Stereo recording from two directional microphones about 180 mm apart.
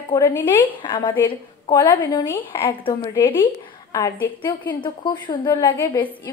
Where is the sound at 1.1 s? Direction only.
10° left (ahead or behind).